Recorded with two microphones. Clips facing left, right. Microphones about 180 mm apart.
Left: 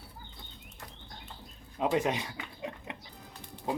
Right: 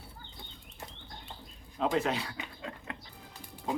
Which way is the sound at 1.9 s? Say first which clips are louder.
Left 2 dB; 15° left (ahead or behind).